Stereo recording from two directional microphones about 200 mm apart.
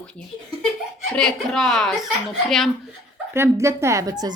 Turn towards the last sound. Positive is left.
turn(degrees=-20)  # may be behind; listen again after turning